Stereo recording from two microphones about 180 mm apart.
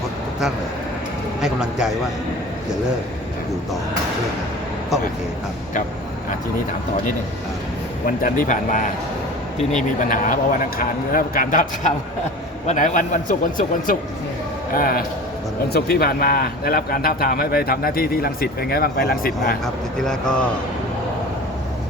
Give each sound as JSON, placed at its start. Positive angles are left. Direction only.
{"t": 1.4, "sound": "speech", "side_deg": -5}
{"t": 8.0, "sound": "a man's voice", "side_deg": 50}
{"t": 19.6, "sound": "speech", "side_deg": 0}